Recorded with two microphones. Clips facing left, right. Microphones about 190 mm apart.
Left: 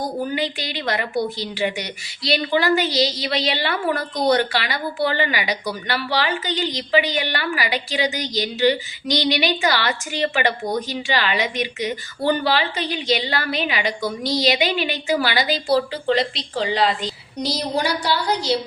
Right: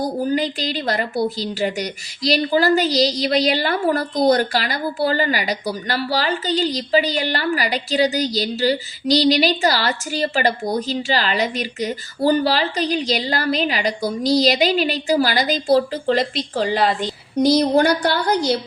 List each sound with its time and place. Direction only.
0.2 s a woman's voice: 40° right (ahead or behind); by 18.5 s 55° right (ahead or behind)